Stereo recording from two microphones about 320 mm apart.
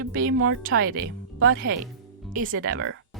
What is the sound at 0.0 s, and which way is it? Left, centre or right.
Speech, right.